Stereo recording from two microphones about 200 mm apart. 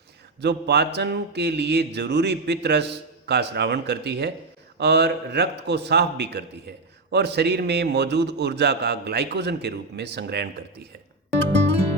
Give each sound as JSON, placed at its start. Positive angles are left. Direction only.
{"t": 0.4, "sound": "a man's voice", "side_deg": -55}